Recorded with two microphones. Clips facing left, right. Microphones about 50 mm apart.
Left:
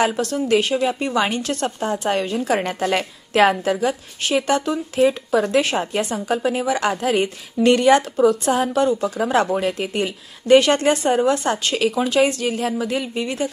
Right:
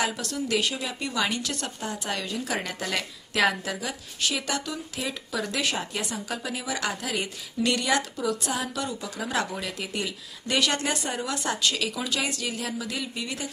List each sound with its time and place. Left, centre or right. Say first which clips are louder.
0.0 s a woman's voice: left 9 dB; left